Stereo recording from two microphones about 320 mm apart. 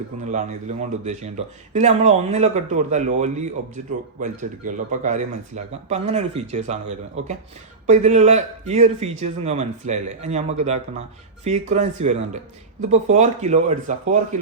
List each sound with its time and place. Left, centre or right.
0.3 s speech: right